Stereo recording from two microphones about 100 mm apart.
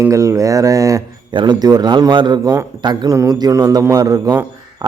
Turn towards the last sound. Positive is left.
turn(degrees=-40)  # may be behind; listen again after turning